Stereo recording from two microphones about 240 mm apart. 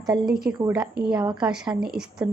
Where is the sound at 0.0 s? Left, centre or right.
Centre.